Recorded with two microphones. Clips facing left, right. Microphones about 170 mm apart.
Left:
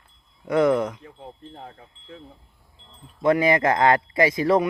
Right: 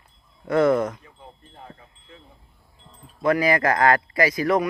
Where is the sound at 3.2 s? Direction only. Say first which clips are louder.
Left 1 dB; 25° left (ahead or behind).